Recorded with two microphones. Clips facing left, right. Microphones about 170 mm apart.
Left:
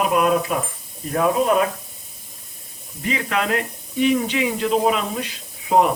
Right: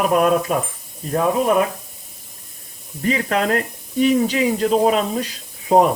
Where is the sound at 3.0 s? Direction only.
40° right (ahead or behind).